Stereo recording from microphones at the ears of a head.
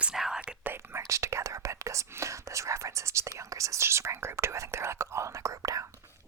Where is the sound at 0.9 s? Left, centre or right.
Right.